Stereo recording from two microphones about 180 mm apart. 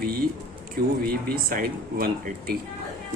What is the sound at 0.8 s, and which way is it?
Speech, 55° right (ahead or behind).